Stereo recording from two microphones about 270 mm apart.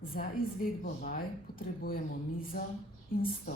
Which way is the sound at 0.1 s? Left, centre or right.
Left.